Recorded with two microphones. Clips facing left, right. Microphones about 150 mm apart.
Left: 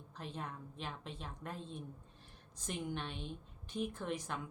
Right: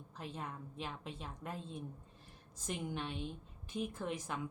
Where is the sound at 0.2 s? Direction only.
10° right (ahead or behind).